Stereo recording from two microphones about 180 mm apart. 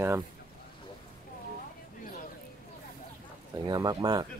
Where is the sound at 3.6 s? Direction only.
25° right (ahead or behind).